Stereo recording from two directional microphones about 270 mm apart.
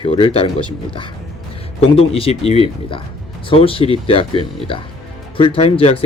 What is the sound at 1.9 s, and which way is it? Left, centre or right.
Speech, left.